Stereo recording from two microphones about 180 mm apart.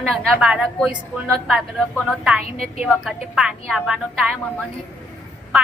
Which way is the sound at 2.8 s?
Centre (ahead or behind).